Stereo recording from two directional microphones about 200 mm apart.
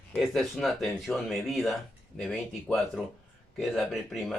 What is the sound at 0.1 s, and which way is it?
Speech, centre (ahead or behind).